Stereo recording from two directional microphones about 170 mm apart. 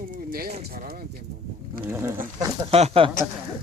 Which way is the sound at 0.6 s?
60° right (ahead or behind).